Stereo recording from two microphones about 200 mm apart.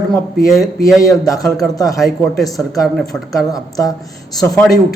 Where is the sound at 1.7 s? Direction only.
20° left (ahead or behind).